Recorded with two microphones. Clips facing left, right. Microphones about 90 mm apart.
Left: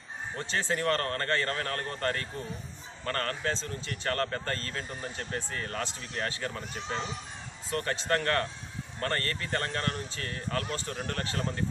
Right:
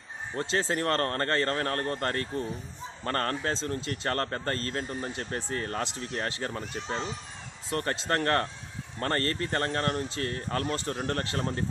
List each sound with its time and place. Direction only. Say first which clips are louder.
0.4 s speech: right 3 dB; 35° right (ahead or behind)